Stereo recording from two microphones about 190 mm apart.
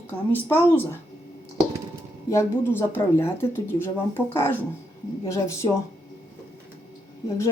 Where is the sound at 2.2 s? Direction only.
15° left (ahead or behind).